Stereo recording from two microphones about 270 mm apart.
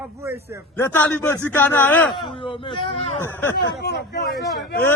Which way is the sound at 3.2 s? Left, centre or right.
Centre.